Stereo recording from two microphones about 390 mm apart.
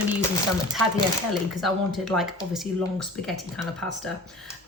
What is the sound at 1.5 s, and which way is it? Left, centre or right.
Speech, centre.